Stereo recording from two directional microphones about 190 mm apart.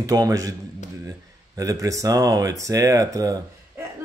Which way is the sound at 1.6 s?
15° right (ahead or behind).